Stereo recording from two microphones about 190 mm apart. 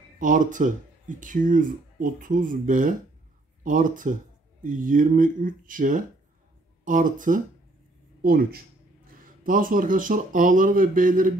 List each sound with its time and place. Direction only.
0.2 s speech: 45° right (ahead or behind)